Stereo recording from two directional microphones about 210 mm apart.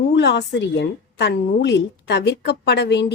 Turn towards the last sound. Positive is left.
turn(degrees=55)  # may be behind; listen again after turning